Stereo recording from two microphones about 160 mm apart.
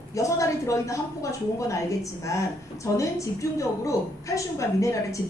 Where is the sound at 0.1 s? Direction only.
20° left (ahead or behind).